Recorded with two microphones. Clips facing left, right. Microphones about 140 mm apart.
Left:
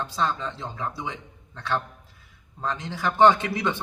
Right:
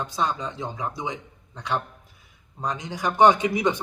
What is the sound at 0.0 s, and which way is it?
Speech, 15° right (ahead or behind).